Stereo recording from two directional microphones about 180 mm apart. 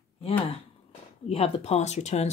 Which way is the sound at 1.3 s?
35° left (ahead or behind).